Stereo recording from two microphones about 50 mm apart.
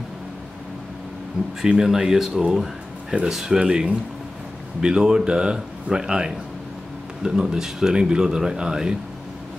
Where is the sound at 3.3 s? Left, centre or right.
Centre.